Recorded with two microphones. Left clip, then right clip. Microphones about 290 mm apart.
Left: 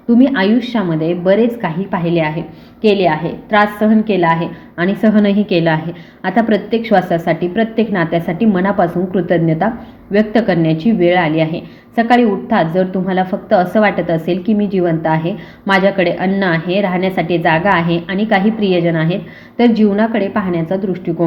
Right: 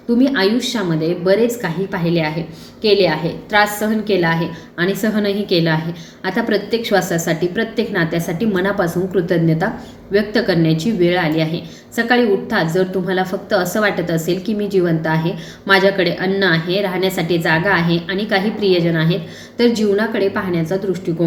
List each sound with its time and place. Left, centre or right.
0.2 s a woman's voice: centre